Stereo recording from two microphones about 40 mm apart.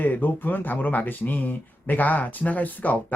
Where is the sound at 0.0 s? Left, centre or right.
Left.